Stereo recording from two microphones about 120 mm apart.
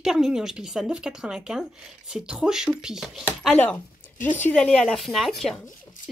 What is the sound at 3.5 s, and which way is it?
Speech, 15° left (ahead or behind).